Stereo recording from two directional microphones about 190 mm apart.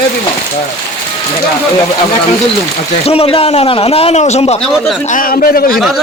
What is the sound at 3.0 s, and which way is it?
A man's voice, 30° left (ahead or behind).